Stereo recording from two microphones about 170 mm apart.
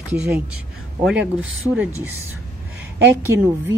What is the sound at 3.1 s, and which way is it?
Speech, 15° right (ahead or behind).